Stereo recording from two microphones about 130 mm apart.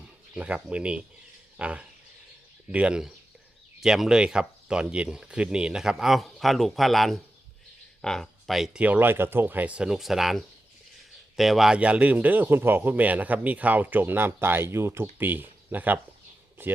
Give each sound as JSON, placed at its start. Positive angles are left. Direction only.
{"t": 0.3, "sound": "speech", "side_deg": -10}